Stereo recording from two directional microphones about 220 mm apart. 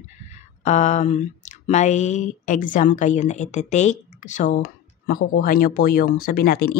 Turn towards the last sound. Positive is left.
turn(degrees=45)  # may be behind; listen again after turning